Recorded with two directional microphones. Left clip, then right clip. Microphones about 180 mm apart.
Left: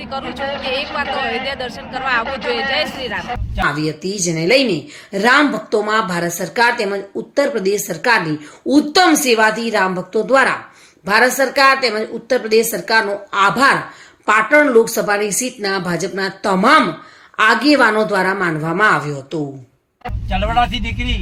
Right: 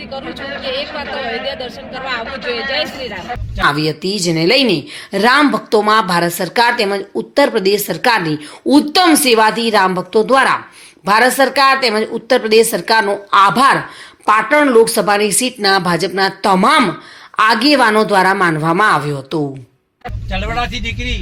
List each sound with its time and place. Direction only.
0.0 s a man's voice: 5° left (ahead or behind)
3.6 s a woman's voice: 20° right (ahead or behind)